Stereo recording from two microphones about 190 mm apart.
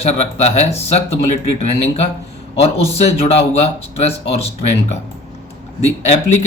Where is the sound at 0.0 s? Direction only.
35° left (ahead or behind).